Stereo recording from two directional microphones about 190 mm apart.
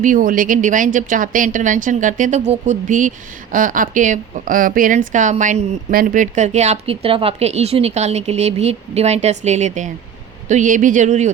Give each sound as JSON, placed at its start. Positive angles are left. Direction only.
{"t": 0.0, "sound": "a woman's voice", "side_deg": -45}